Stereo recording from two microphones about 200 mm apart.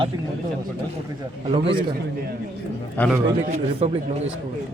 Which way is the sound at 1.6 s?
25° right (ahead or behind).